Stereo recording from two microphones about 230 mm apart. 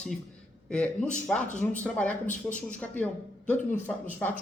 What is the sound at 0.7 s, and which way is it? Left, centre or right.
A man's voice, centre.